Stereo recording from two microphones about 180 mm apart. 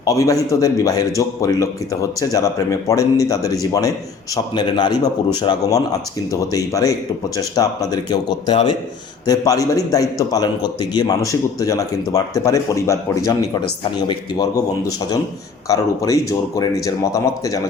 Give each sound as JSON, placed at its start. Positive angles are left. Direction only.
{"t": 0.0, "sound": "a man's voice", "side_deg": 20}